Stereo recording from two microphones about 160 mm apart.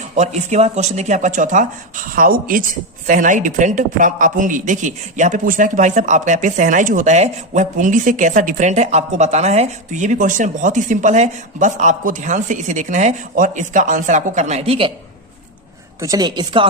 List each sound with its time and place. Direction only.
0.2 s a woman's voice: 45° right (ahead or behind); by 2.6 s 65° right (ahead or behind)
3.1 s a woman's voice: 55° right (ahead or behind); by 14.9 s 35° right (ahead or behind)
16.0 s a woman's voice: 20° right (ahead or behind)